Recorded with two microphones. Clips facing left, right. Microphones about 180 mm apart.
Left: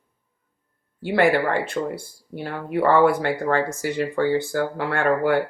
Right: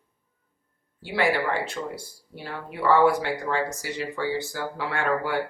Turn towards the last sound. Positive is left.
turn(degrees=55)  # may be behind; listen again after turning